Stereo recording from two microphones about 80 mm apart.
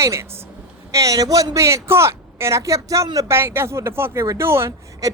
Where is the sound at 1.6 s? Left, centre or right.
Right.